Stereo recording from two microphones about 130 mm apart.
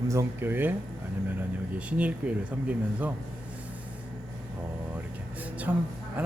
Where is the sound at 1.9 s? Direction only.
10° right (ahead or behind).